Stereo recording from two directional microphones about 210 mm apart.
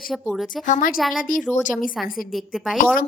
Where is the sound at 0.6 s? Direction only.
40° left (ahead or behind).